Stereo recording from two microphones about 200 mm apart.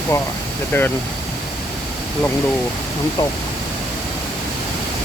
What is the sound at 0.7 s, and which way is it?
Speech, 10° left (ahead or behind).